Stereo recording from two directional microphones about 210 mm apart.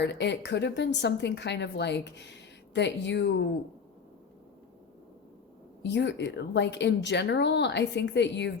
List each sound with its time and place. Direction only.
0.0 s a woman's voice: 55° left (ahead or behind)
5.8 s a woman's voice: 55° left (ahead or behind)